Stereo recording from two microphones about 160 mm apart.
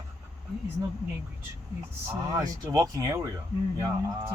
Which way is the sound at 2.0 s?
25° right (ahead or behind).